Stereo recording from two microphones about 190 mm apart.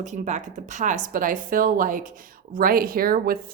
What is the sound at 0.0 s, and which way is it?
A woman's voice, 40° right (ahead or behind).